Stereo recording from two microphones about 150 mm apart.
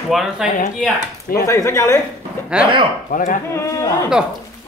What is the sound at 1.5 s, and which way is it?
Speech, 20° left (ahead or behind).